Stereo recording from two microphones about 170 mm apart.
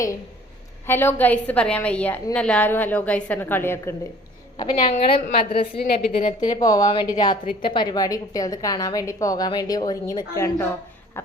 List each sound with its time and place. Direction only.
0.9 s a woman's voice: 10° left (ahead or behind)
4.5 s a woman's voice: 25° left (ahead or behind)
5.8 s a woman's voice: 65° left (ahead or behind)
6.1 s a woman's voice: 50° left (ahead or behind)
6.5 s a woman's voice: 20° left (ahead or behind)